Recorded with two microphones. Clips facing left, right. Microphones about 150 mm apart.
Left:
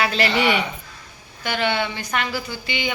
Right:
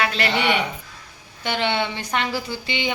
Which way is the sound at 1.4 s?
25° right (ahead or behind).